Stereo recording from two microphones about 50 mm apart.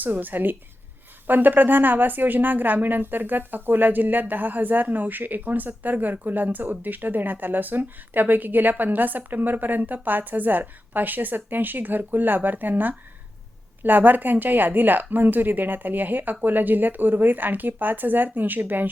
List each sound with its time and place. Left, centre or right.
0.0 s a woman's voice: right